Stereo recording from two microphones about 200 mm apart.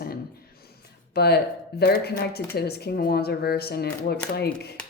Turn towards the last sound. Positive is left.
turn(degrees=50)  # may be behind; listen again after turning